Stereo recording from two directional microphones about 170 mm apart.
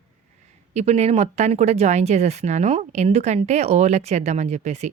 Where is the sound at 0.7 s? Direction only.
40° right (ahead or behind).